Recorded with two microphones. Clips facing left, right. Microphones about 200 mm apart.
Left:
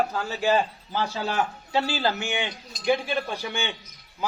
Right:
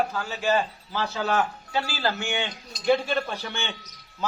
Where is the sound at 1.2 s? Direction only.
25° left (ahead or behind).